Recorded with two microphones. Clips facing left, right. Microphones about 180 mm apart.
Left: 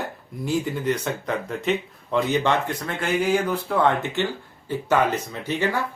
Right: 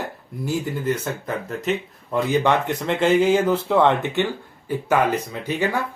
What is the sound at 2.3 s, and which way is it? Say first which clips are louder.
Speech: right 3 dB; 15° right (ahead or behind).